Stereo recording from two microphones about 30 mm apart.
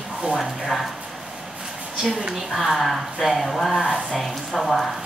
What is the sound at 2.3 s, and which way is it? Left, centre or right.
Speech, centre.